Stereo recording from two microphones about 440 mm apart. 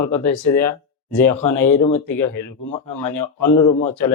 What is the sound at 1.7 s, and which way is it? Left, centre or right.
Speech, centre.